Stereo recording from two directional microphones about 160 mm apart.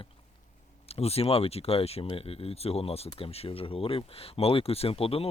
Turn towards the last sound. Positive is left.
turn(degrees=35)  # may be behind; listen again after turning